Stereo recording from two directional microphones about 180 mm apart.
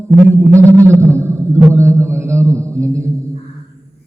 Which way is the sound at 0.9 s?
15° right (ahead or behind).